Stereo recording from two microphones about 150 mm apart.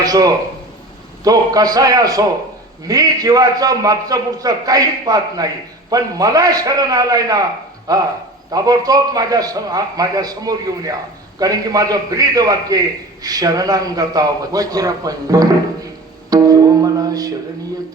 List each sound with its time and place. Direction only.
0.0 s a man's voice: 25° right (ahead or behind)
16.3 s music: 25° right (ahead or behind)